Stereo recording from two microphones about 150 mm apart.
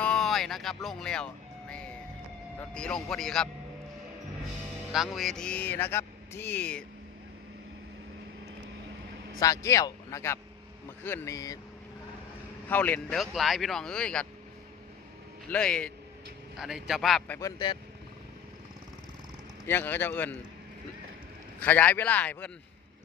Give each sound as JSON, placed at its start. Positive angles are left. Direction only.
{"t": 0.0, "sound": "a sound", "side_deg": 5}
{"t": 0.8, "sound": "music", "side_deg": 5}
{"t": 2.7, "sound": "speech", "side_deg": 5}
{"t": 4.9, "sound": "speech", "side_deg": 0}
{"t": 9.4, "sound": "speech", "side_deg": 20}
{"t": 12.6, "sound": "speech", "side_deg": 10}
{"t": 13.2, "sound": "speech", "side_deg": 0}
{"t": 15.5, "sound": "speech", "side_deg": 5}
{"t": 17.4, "sound": "speech", "side_deg": 25}
{"t": 19.6, "sound": "speech", "side_deg": 15}
{"t": 21.5, "sound": "speech", "side_deg": 10}